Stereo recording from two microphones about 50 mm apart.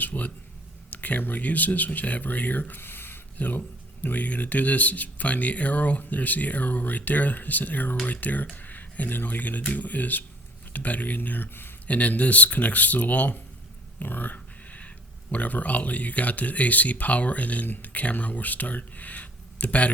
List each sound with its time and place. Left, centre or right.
0.0 s speech: left
4.0 s speech: left
11.9 s speech: left